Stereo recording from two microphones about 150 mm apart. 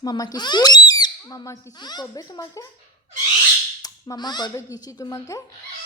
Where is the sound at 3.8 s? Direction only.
25° left (ahead or behind).